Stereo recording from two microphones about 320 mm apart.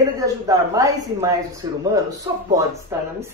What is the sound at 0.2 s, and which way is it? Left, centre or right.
A man's voice, centre.